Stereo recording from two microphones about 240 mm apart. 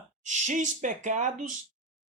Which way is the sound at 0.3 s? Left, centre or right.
Right.